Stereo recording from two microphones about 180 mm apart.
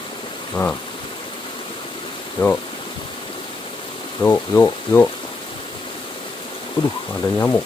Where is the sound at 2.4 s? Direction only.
25° left (ahead or behind).